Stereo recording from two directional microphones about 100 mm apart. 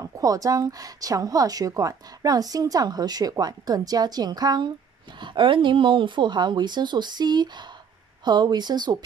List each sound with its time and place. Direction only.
0.0 s a woman's voice: 35° right (ahead or behind)
5.2 s speech: 55° right (ahead or behind)